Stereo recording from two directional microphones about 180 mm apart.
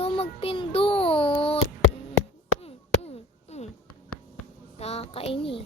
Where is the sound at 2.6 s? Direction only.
35° left (ahead or behind).